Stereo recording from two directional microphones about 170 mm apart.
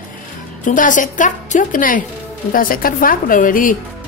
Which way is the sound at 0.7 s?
50° left (ahead or behind).